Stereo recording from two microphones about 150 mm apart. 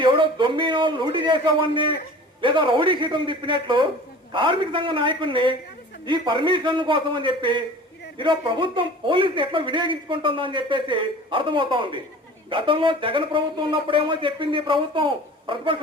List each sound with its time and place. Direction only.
0.0 s a man's voice: 35° right (ahead or behind)